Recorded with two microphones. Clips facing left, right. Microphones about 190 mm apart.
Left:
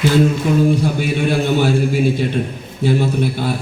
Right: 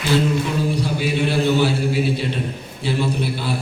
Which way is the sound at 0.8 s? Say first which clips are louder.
Left 3 dB; 50° left (ahead or behind).